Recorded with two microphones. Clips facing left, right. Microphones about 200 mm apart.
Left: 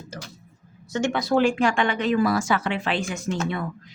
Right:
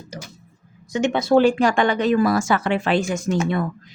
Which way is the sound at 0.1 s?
15° right (ahead or behind).